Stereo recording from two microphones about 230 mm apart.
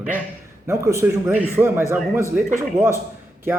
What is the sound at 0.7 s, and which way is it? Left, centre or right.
A man's voice, centre.